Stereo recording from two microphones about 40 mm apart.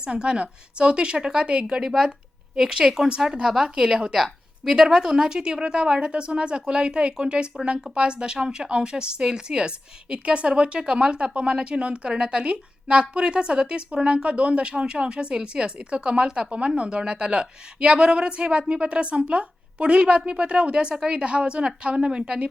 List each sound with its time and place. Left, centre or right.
0.0 s a woman's voice: right
4.1 s a sound: centre
4.9 s a woman's voice: centre